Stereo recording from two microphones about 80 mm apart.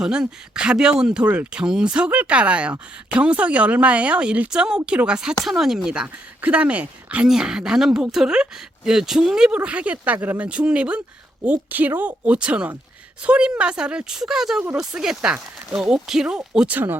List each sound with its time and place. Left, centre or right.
0.0 s speech: centre
16.6 s speech: right